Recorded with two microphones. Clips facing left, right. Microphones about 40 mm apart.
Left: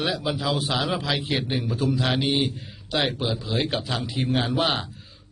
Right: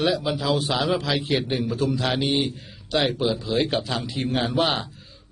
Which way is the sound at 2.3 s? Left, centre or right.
Centre.